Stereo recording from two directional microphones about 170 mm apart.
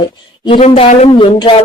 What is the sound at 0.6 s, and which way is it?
Speech, 35° left (ahead or behind).